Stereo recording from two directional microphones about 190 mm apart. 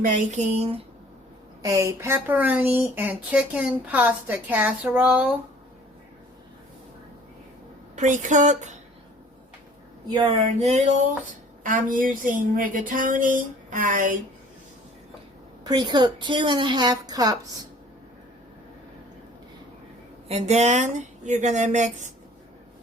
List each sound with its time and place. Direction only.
0.0 s speech: 40° right (ahead or behind)
1.6 s speech: 15° right (ahead or behind)
7.9 s speech: 40° right (ahead or behind)
10.1 s a woman's voice: 25° right (ahead or behind)
10.6 s a woman's voice: 35° right (ahead or behind)
15.6 s a woman's voice: 25° right (ahead or behind)
20.2 s speech: 35° right (ahead or behind)